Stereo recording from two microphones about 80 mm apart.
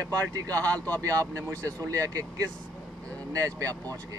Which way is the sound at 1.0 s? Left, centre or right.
Right.